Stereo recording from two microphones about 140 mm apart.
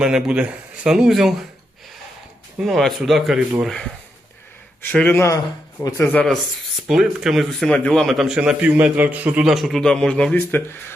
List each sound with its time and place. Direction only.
0.0 s a man's voice: 5° right (ahead or behind)
2.6 s a man's voice: centre (ahead or behind); by 6.2 s 15° left (ahead or behind)
6.8 s a man's voice: 5° right (ahead or behind); by 10.9 s 15° left (ahead or behind)